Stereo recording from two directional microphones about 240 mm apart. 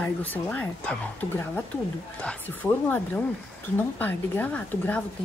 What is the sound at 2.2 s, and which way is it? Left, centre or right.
Speech, centre.